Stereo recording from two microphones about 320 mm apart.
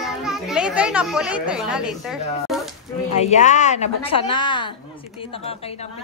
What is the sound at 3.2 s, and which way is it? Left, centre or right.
A woman's voice, left.